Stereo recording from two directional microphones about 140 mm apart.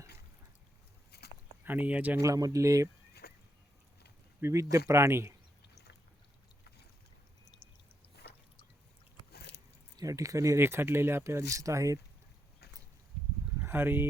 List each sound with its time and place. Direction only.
1.6 s speech: 10° right (ahead or behind)
2.2 s speech: 25° right (ahead or behind)
4.4 s speech: 20° right (ahead or behind)
7.4 s pour: 30° left (ahead or behind)
10.0 s speech: 25° right (ahead or behind)
13.6 s speech: 15° right (ahead or behind)